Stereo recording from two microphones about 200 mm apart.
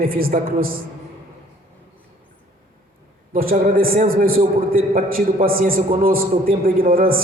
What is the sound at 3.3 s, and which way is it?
A man's voice, 45° right (ahead or behind).